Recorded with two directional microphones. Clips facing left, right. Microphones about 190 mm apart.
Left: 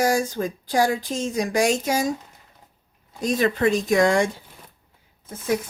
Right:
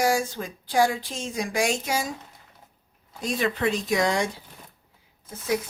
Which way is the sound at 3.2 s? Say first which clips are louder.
Left 5 dB; 40° left (ahead or behind).